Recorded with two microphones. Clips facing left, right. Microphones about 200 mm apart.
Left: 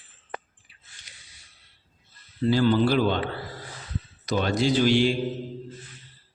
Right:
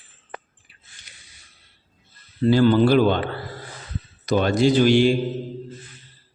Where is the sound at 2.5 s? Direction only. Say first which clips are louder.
Right 5 dB; 55° right (ahead or behind).